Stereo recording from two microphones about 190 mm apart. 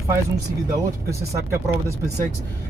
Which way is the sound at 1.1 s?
15° right (ahead or behind).